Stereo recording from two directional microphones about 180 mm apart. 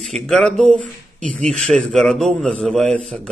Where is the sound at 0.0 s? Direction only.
5° left (ahead or behind).